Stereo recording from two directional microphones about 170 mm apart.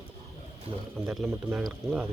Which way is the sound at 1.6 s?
5° right (ahead or behind).